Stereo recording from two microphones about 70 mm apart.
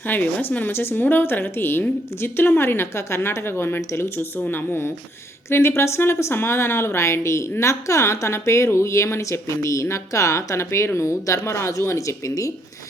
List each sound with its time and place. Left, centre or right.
0.0 s speech: left
4.4 s a woman's voice: left